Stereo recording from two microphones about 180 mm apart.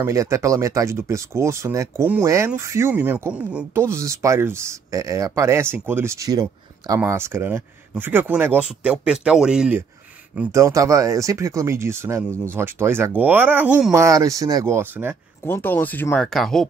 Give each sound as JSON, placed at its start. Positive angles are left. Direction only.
{"t": 0.0, "sound": "speech", "side_deg": -15}
{"t": 13.9, "sound": "speech", "side_deg": -15}
{"t": 15.4, "sound": "speech", "side_deg": 10}